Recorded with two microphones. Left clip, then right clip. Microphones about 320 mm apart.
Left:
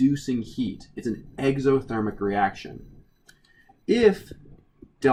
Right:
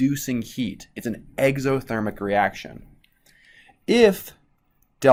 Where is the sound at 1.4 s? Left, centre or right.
Centre.